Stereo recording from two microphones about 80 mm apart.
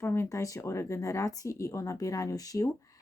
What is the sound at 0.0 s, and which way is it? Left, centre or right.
Speech, left.